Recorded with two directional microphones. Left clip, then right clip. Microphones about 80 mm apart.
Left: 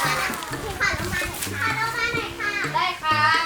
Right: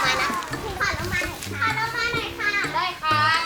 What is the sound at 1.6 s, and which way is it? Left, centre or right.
Children playing, centre.